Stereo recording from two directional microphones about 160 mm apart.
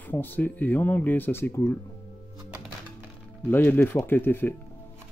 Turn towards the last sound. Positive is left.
turn(degrees=15)  # may be behind; listen again after turning